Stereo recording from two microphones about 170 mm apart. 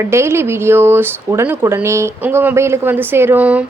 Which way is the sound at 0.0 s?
15° right (ahead or behind).